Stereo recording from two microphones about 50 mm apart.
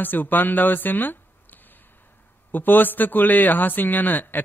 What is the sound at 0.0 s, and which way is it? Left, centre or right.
A man's voice, left.